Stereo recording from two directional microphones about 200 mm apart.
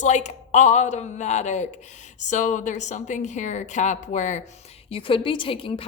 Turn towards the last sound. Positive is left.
turn(degrees=25)  # may be behind; listen again after turning